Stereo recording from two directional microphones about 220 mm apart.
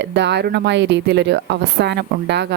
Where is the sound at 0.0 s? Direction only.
55° right (ahead or behind).